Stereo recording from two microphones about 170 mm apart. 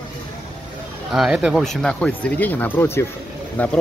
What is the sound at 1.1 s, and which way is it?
Speech, centre (ahead or behind).